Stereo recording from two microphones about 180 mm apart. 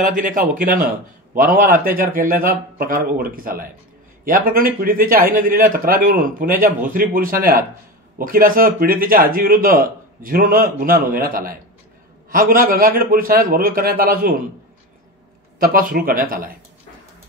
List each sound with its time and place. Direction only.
0.0 s a man's voice: 45° right (ahead or behind)
15.6 s a man's voice: 50° right (ahead or behind)